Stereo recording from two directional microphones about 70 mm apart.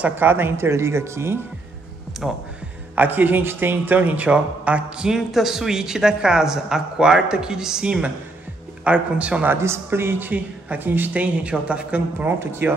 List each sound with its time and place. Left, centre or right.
0.1 s speech: right
2.1 s music: centre
3.0 s a man's voice: right
9.5 s a man's voice: right
11.4 s speech: centre
12.2 s speech: right